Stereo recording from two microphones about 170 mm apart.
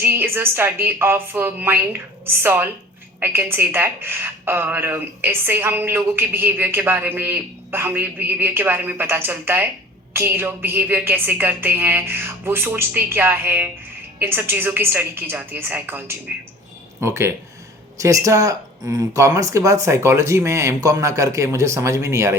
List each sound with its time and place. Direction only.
0.0 s a woman's voice: 15° right (ahead or behind)